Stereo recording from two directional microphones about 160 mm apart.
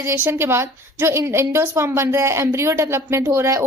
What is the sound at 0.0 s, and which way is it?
A woman's voice, 15° right (ahead or behind).